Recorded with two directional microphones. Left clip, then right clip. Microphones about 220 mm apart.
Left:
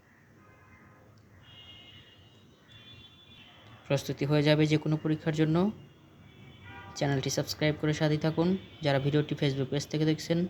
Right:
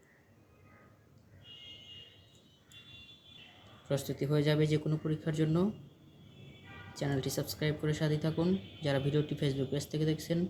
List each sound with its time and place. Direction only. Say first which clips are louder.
3.8 s speech: left 4 dB; 35° left (ahead or behind)
6.9 s speech: left 5 dB; 35° left (ahead or behind)